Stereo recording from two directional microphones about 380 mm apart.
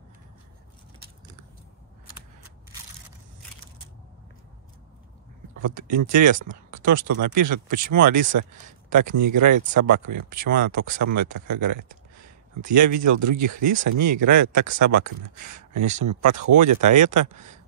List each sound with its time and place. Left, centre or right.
6.9 s speech: right
17.3 s speech: centre